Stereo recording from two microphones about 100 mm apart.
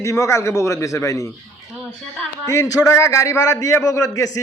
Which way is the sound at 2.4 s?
35° left (ahead or behind).